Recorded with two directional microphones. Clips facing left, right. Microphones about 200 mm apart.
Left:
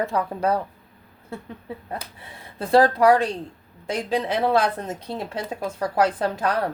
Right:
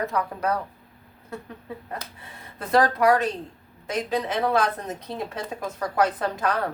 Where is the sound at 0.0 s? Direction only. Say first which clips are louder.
Left 3 dB; 30° left (ahead or behind).